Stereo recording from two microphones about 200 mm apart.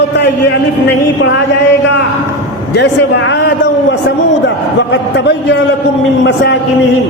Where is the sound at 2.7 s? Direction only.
60° left (ahead or behind).